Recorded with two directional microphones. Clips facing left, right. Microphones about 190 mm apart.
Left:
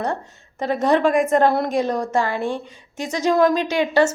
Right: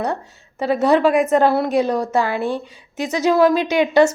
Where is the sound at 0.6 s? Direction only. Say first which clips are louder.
Right 3 dB; 10° right (ahead or behind).